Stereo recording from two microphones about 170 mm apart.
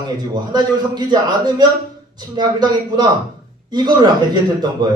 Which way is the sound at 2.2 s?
25° right (ahead or behind).